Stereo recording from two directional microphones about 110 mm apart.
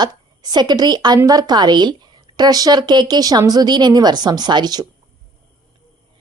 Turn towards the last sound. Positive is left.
turn(degrees=-40)  # may be behind; listen again after turning